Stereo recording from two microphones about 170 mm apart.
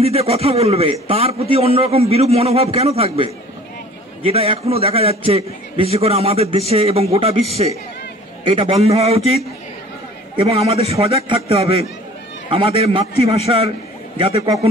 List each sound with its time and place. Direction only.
0.0 s a man's voice: 35° right (ahead or behind)
14.1 s a man's voice: 30° right (ahead or behind)